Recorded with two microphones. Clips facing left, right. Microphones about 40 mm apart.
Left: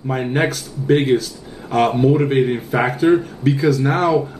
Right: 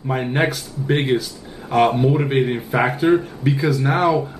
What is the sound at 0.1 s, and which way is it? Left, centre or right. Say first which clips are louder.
A man's voice: left 1 dB; centre.